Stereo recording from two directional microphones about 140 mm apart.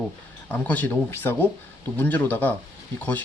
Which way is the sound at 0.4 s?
10° left (ahead or behind).